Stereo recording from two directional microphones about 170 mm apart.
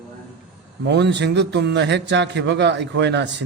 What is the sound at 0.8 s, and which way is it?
A man's voice, 90° right.